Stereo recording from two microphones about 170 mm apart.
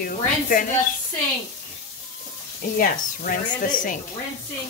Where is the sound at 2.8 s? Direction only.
55° left (ahead or behind).